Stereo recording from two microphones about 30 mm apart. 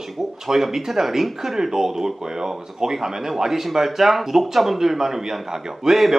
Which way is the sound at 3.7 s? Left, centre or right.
Centre.